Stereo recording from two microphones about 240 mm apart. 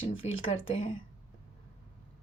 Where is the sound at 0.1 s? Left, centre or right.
Left.